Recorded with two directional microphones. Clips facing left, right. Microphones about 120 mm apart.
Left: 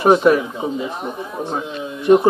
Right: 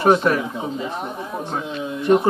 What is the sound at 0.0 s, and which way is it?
Speech, 10° left (ahead or behind).